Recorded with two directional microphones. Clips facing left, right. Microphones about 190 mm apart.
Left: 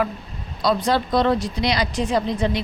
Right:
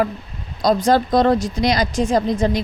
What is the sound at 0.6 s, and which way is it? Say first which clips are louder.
Speech: right 4 dB; 45° right (ahead or behind).